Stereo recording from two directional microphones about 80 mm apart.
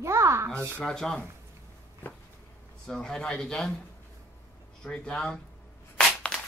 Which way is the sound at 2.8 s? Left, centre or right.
Centre.